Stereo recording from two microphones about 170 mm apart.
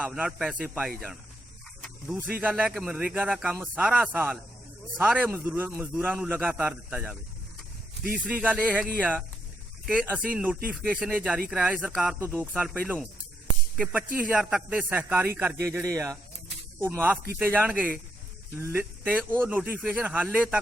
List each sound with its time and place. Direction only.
0.0 s speech: 5° right (ahead or behind)
2.2 s speech: 10° right (ahead or behind)
8.2 s speech: 10° right (ahead or behind)
12.2 s speech: 15° right (ahead or behind)